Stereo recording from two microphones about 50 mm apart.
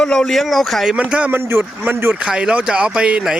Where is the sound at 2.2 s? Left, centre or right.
Right.